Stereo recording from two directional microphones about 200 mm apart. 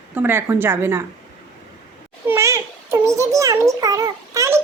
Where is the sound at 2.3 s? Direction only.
15° right (ahead or behind).